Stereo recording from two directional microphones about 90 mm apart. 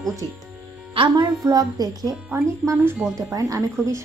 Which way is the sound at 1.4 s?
40° right (ahead or behind).